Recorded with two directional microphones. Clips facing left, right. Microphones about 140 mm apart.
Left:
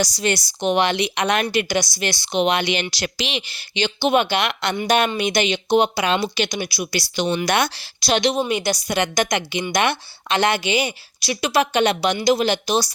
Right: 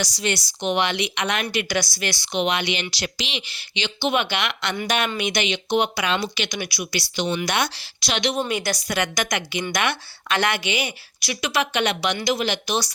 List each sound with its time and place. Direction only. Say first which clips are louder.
0.0 s a woman's voice: left 4 dB; 40° left (ahead or behind)
1.6 s a woman's voice: left 3 dB; 20° left (ahead or behind)
7.3 s a woman's voice: left 4 dB; 50° left (ahead or behind)
8.4 s a woman's voice: left 3 dB; 20° left (ahead or behind)